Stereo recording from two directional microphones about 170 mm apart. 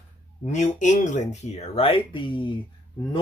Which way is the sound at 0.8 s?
45° left (ahead or behind).